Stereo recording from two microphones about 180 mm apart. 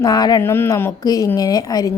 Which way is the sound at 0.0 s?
20° left (ahead or behind).